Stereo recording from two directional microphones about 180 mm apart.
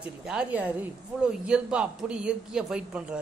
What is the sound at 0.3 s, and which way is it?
A woman's voice, 5° right (ahead or behind).